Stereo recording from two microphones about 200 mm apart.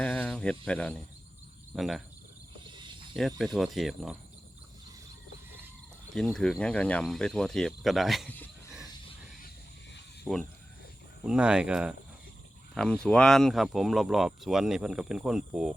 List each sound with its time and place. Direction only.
0.0 s cricket: 5° left (ahead or behind)
0.6 s speech: 5° left (ahead or behind)
2.7 s snake: 25° right (ahead or behind)
3.2 s speech: centre (ahead or behind)
6.1 s speech: centre (ahead or behind)
10.3 s speech: centre (ahead or behind)